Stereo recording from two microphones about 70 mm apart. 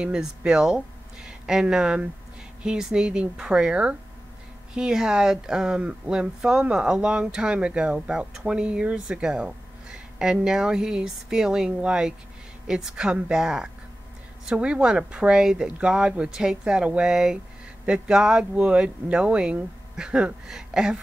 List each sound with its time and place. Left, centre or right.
0.0 s speech: centre